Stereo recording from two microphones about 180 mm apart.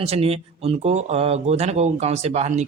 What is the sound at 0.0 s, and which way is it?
Speech, 35° right (ahead or behind).